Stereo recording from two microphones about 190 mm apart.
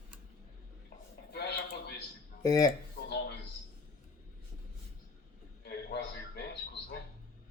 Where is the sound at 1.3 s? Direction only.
60° left (ahead or behind).